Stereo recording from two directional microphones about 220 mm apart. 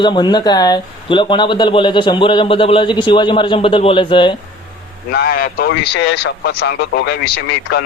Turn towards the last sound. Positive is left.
turn(degrees=50)  # may be behind; listen again after turning